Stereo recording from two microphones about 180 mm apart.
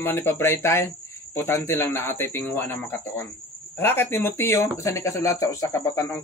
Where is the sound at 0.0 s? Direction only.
10° left (ahead or behind).